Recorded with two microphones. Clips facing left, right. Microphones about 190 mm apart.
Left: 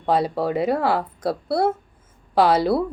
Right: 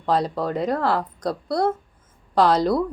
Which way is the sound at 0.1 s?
5° left (ahead or behind).